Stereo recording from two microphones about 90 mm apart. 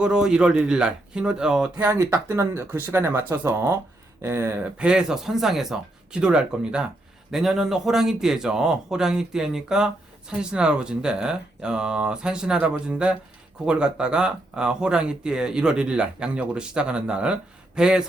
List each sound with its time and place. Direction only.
0.0 s speech: 10° right (ahead or behind)
1.7 s speech: 40° right (ahead or behind)
4.6 s speech: 10° right (ahead or behind)